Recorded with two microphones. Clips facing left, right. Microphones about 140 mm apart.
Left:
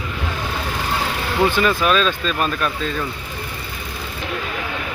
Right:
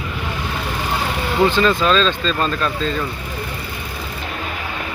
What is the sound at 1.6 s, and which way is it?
Speech, 10° left (ahead or behind).